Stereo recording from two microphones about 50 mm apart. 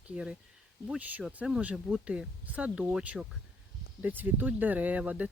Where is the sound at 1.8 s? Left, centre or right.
Centre.